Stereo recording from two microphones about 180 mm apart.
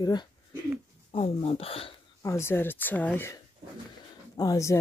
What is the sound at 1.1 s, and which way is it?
Speech, 35° left (ahead or behind).